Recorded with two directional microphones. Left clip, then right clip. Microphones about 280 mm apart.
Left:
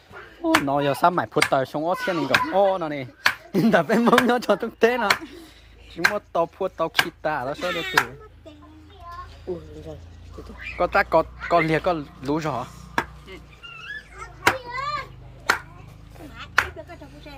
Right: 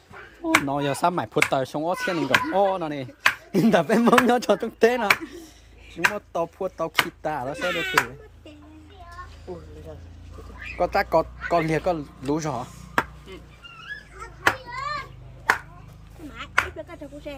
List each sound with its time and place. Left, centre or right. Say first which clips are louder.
0.4 s speech: left 2 dB; centre
10.8 s speech: left 2 dB; centre
17.3 s speech: right 7 dB; right